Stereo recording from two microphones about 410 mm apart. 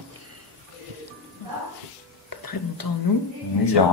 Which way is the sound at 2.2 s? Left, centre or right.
Left.